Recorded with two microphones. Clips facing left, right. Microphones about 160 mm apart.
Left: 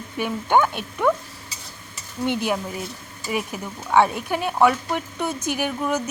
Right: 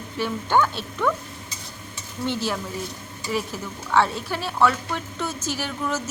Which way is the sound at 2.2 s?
15° left (ahead or behind).